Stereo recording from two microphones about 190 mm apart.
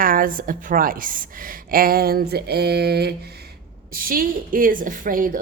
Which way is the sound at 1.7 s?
50° right (ahead or behind).